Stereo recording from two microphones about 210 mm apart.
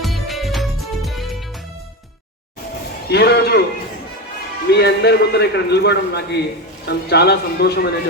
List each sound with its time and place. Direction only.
0.0 s music: centre (ahead or behind)
3.1 s a man's voice: 50° left (ahead or behind)
4.7 s a man's voice: 50° left (ahead or behind)